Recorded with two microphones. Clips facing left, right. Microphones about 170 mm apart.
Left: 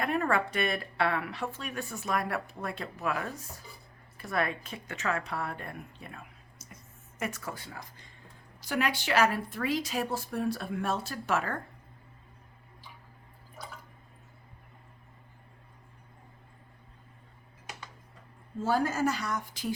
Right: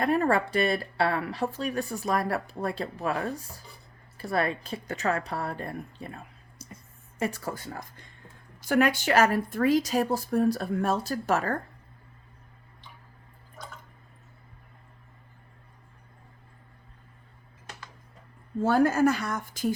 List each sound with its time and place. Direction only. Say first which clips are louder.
0.0 s speech: right 5 dB; 35° right (ahead or behind)
7.5 s speech: right 6 dB; 45° right (ahead or behind)
18.6 s speech: right 6 dB; 60° right (ahead or behind)